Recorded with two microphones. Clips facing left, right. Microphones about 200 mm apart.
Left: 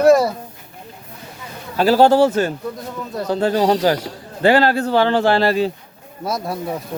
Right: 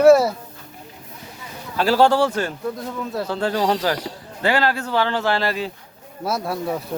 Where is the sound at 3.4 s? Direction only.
25° left (ahead or behind).